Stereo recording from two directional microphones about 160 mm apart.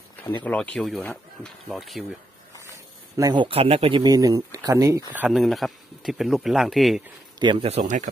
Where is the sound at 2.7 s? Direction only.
20° right (ahead or behind).